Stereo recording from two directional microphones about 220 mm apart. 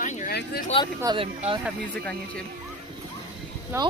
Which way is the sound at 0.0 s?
35° left (ahead or behind).